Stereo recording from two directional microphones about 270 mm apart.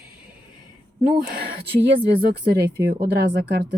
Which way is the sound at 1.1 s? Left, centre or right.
Right.